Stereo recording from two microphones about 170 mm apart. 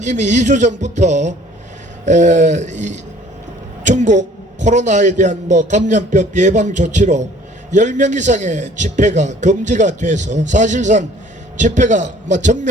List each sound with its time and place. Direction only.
0.0 s a man's voice: 45° right (ahead or behind)